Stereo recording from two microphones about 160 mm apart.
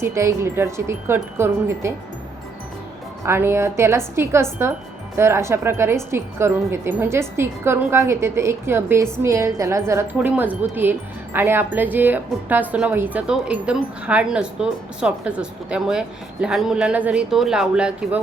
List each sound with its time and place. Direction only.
0.0 s a woman's voice: 20° right (ahead or behind)
3.2 s a woman's voice: 15° right (ahead or behind)